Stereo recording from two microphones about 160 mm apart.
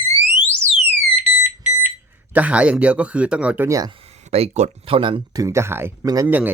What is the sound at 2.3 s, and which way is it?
Speech, 10° right (ahead or behind).